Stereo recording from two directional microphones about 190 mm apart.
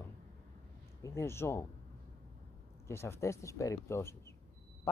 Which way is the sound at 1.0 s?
15° left (ahead or behind).